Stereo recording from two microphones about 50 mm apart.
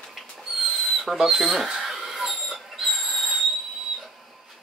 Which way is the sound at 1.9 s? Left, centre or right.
Centre.